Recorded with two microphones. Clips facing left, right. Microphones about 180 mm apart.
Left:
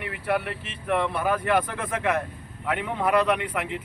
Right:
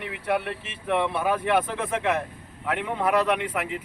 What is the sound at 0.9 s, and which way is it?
Speech, 15° right (ahead or behind).